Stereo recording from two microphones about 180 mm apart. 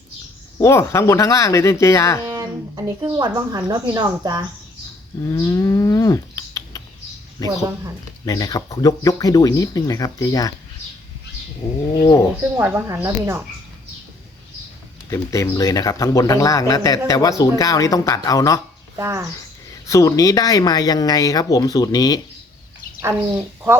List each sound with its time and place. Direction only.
0.6 s speech: 15° left (ahead or behind)
2.2 s speech: 15° right (ahead or behind)
5.2 s cattle: 20° left (ahead or behind)
7.4 s speech: 20° left (ahead or behind)
12.4 s speech: 10° right (ahead or behind)
15.1 s speech: 15° left (ahead or behind)
18.9 s speech: 15° right (ahead or behind)
19.9 s speech: 20° left (ahead or behind)